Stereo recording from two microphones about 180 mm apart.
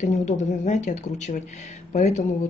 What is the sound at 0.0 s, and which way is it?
Speech, 40° left (ahead or behind).